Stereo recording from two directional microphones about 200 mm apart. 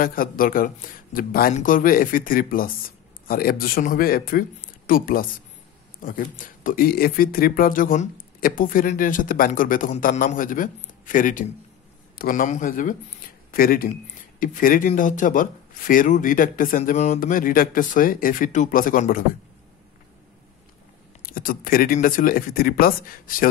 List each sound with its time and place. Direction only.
0.0 s speech: 45° left (ahead or behind)
21.2 s speech: 45° left (ahead or behind)